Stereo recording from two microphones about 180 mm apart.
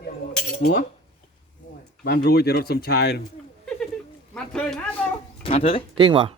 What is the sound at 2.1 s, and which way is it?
Speech, 60° left (ahead or behind).